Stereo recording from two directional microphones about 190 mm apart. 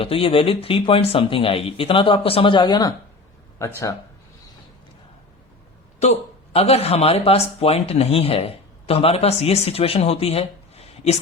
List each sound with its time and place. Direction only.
0.0 s speech: 30° left (ahead or behind)
6.0 s speech: 35° left (ahead or behind)